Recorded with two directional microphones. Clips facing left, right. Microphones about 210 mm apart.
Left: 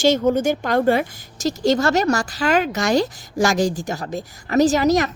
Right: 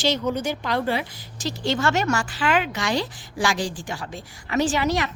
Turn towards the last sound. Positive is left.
turn(degrees=40)  # may be behind; listen again after turning